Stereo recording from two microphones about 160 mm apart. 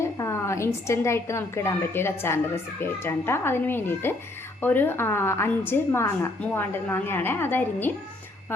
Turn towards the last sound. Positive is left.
turn(degrees=15)  # may be behind; listen again after turning